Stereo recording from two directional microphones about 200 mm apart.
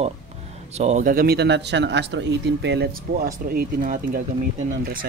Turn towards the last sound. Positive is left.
turn(degrees=-45)  # may be behind; listen again after turning